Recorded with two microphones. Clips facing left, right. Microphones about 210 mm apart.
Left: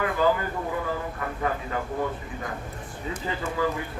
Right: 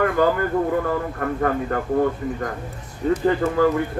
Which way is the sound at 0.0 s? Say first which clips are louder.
Right 5 dB; 55° right (ahead or behind).